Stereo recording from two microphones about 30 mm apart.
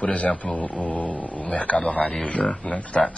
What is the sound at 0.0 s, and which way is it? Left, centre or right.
Speech, left.